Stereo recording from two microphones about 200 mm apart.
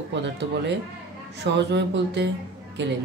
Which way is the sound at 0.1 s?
60° right (ahead or behind).